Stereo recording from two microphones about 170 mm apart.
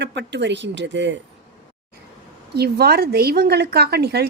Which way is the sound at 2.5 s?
70° right (ahead or behind).